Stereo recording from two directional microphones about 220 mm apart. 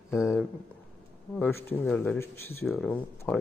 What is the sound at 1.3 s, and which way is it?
Speech, 10° left (ahead or behind).